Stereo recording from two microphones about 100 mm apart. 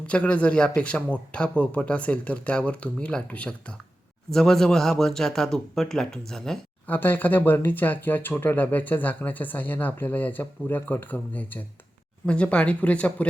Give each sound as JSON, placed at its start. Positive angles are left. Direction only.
{"t": 0.0, "sound": "a man's voice", "side_deg": 10}
{"t": 6.8, "sound": "speech", "side_deg": 20}